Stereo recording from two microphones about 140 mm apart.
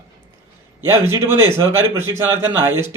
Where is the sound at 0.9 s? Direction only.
20° right (ahead or behind).